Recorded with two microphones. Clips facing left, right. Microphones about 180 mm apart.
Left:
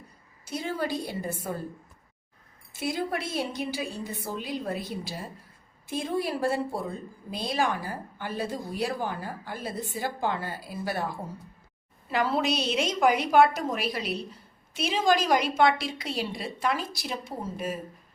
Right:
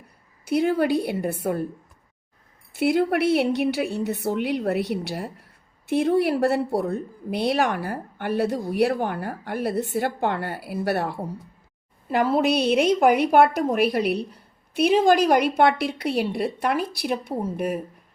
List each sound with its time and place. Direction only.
0.4 s a woman's voice: 60° right (ahead or behind)
2.7 s a woman's voice: 65° right (ahead or behind)
12.1 s a woman's voice: 55° right (ahead or behind)